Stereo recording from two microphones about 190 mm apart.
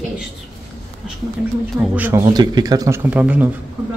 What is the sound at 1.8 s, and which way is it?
Speech, 10° right (ahead or behind).